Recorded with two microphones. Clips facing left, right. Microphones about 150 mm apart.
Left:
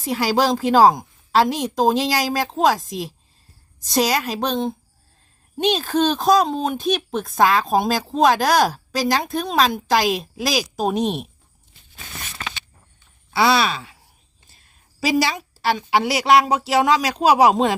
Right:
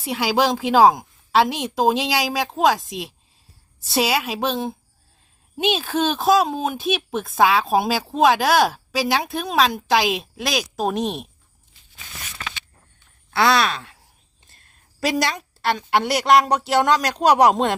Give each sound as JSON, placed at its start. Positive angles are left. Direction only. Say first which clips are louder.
{"t": 0.0, "sound": "speech", "louder": "left 1 dB", "side_deg": 0}
{"t": 12.3, "sound": "a sound", "louder": "even", "side_deg": 35}
{"t": 13.3, "sound": "a woman's voice", "louder": "left 1 dB", "side_deg": 0}